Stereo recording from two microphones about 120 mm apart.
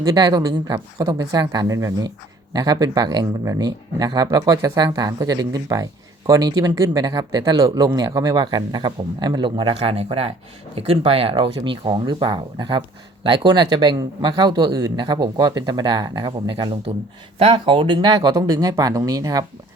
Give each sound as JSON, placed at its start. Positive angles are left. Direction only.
{"t": 0.2, "sound": "speech", "side_deg": -35}